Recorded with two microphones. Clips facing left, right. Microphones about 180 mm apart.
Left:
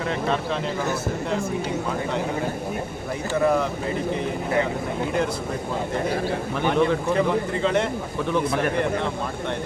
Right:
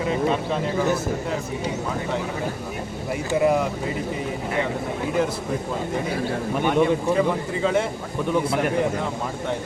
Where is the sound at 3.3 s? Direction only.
10° right (ahead or behind).